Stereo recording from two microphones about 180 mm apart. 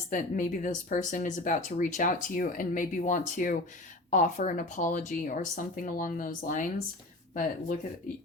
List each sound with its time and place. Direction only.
0.1 s speech: 45° left (ahead or behind)